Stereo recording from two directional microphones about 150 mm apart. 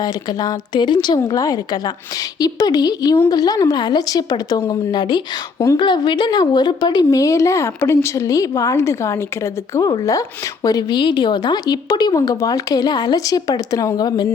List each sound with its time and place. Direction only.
0.0 s speech: 25° left (ahead or behind)